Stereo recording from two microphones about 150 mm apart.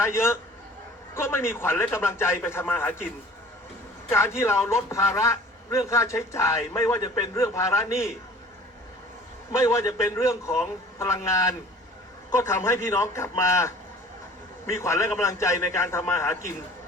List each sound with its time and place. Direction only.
0.0 s a man's voice: 15° left (ahead or behind)
4.1 s a man's voice: 15° left (ahead or behind)
9.5 s a man's voice: 20° left (ahead or behind)